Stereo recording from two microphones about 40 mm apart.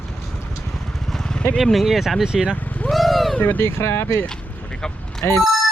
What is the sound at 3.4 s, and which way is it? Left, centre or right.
Speech, left.